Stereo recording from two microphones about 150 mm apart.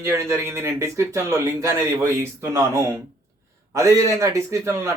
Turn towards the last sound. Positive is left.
turn(degrees=-20)  # may be behind; listen again after turning